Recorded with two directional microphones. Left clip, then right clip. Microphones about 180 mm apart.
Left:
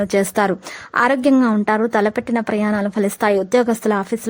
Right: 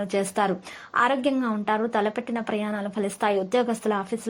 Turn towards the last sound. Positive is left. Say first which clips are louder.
# left 7 dB
turn(degrees=35)  # may be behind; listen again after turning